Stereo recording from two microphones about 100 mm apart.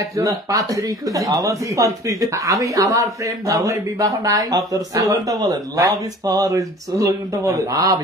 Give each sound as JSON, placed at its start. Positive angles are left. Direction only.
{"t": 0.1, "sound": "speech", "side_deg": -35}